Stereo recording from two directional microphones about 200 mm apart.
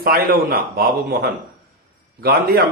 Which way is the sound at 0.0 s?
50° right (ahead or behind).